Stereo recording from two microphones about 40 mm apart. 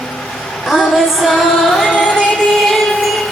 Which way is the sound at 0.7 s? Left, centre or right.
Centre.